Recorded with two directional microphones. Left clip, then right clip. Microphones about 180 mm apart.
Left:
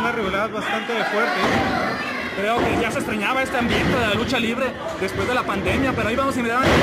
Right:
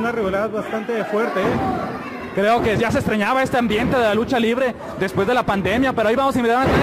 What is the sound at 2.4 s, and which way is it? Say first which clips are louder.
Speech: right 4 dB; 45° right (ahead or behind).